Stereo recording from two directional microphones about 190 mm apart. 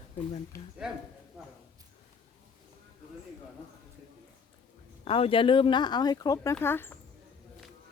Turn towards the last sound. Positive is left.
turn(degrees=10)  # may be behind; listen again after turning